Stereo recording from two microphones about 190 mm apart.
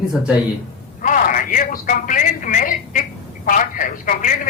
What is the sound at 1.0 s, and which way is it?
A woman's voice, 45° left (ahead or behind).